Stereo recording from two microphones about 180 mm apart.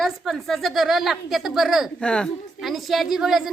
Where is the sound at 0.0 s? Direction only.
Centre (ahead or behind).